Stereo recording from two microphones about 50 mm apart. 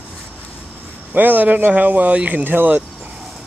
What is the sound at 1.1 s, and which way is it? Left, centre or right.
Speech, right.